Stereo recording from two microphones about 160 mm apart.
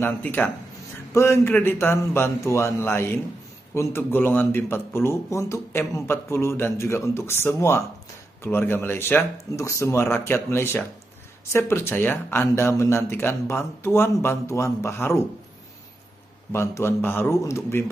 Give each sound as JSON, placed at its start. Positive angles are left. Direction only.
{"t": 0.0, "sound": "speech", "side_deg": 10}
{"t": 16.5, "sound": "speech", "side_deg": 15}